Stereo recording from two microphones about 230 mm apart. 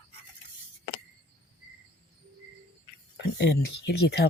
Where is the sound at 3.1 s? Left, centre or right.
Left.